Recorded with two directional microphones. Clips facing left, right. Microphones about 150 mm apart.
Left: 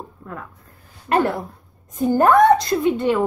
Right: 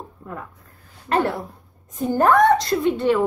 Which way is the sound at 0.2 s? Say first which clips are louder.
Right 2 dB; 5° right (ahead or behind).